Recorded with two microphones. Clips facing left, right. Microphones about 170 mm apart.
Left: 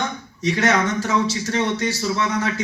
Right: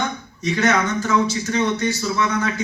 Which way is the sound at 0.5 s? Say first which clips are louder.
Right 1 dB; 30° left (ahead or behind).